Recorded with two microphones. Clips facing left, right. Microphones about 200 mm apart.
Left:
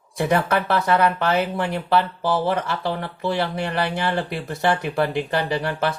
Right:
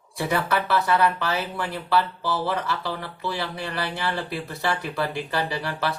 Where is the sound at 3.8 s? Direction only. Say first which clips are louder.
Left 5 dB; 20° left (ahead or behind).